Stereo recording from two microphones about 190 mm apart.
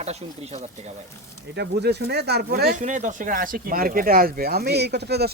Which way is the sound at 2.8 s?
40° right (ahead or behind).